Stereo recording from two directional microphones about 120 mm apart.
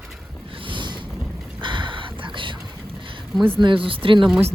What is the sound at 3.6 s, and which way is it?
Speech, 45° right (ahead or behind).